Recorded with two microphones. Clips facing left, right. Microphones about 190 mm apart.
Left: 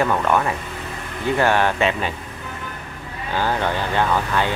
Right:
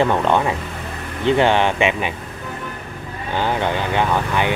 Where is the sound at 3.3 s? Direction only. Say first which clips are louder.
Right 1 dB; 20° right (ahead or behind).